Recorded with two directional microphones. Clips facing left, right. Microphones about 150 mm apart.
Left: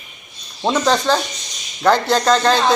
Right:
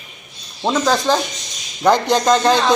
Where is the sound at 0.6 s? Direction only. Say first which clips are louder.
Even; centre (ahead or behind).